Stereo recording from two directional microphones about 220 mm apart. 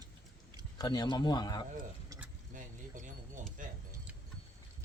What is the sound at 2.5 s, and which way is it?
Keys jangling, 35° right (ahead or behind).